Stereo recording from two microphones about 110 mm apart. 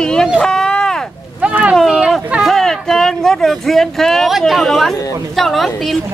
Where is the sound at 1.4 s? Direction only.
10° right (ahead or behind).